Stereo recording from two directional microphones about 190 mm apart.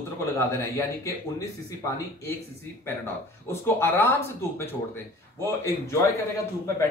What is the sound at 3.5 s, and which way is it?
Speech, 10° left (ahead or behind).